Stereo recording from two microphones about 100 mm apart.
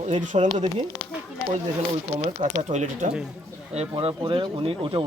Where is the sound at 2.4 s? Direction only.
55° right (ahead or behind).